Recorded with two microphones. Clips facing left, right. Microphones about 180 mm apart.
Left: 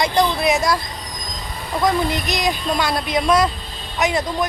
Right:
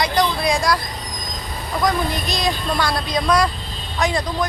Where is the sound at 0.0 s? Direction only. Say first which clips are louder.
Left 2 dB; 25° left (ahead or behind).